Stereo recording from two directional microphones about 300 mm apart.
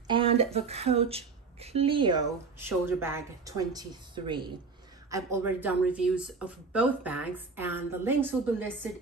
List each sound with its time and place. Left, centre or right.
0.1 s speech: centre